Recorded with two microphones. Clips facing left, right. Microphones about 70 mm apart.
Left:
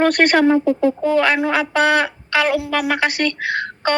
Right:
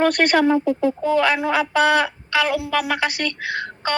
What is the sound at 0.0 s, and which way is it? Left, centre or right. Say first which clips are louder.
Speech: left 3 dB; left.